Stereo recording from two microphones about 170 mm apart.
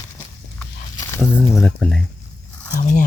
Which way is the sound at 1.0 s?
15° left (ahead or behind).